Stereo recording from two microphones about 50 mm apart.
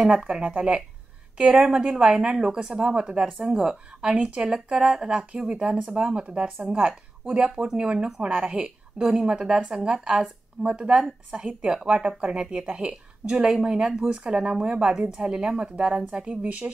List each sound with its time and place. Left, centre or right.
0.2 s speech: right